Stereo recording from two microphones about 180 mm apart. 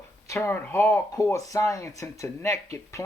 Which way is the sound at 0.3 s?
15° left (ahead or behind).